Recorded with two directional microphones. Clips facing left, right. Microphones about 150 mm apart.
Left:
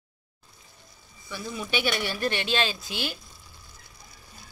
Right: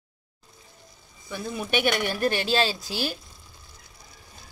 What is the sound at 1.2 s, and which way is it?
Speech, 50° right (ahead or behind).